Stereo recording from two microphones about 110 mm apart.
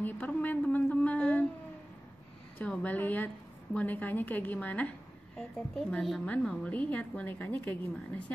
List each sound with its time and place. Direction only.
0.0 s a woman's voice: 15° left (ahead or behind)
2.6 s a woman's voice: 10° left (ahead or behind)